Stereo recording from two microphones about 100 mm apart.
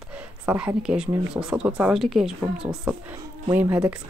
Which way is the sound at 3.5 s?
20° right (ahead or behind).